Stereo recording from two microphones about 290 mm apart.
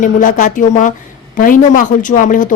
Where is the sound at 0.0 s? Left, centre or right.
Left.